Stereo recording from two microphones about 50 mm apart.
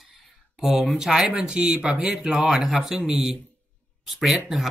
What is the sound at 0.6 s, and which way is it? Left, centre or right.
Speech, centre.